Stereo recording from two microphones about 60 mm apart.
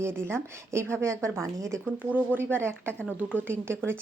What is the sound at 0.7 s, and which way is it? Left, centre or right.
Speech, right.